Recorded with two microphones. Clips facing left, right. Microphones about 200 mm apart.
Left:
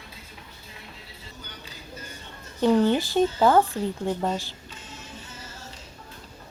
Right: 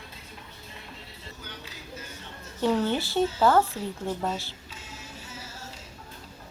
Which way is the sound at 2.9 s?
15° left (ahead or behind).